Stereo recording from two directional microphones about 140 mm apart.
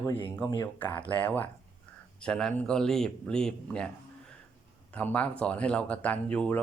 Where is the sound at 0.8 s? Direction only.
10° left (ahead or behind).